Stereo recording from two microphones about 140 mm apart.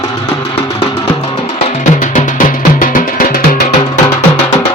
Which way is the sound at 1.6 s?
55° left (ahead or behind).